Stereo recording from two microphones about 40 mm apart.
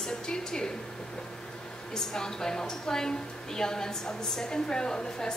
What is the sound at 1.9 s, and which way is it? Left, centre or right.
A woman's voice, centre.